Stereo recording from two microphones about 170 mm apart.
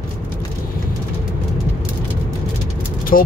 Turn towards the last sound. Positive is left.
turn(degrees=50)  # may be behind; listen again after turning